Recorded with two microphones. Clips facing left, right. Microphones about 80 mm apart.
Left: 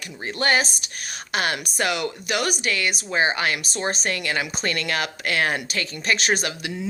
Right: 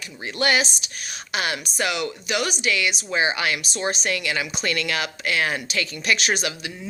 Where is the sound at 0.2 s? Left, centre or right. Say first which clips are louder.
Even; left.